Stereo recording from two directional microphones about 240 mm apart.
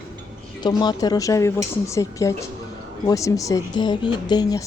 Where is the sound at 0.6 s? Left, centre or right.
Centre.